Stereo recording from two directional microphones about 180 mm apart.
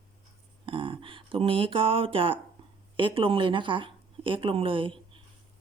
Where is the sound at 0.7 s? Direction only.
30° right (ahead or behind).